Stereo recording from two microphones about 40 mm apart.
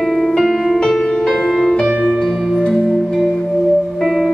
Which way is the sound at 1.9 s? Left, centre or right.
Right.